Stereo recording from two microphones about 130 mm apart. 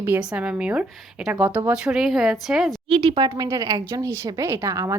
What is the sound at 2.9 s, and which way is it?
A woman's voice, 40° right (ahead or behind).